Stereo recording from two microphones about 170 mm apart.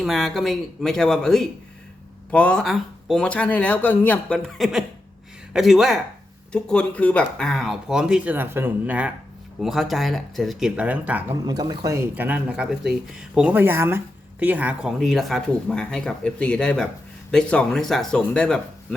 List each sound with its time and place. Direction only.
0.0 s speech: centre (ahead or behind)
11.4 s speech: 25° right (ahead or behind); by 18.9 s 5° left (ahead or behind)